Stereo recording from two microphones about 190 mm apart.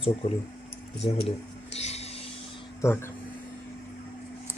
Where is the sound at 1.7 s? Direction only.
35° left (ahead or behind).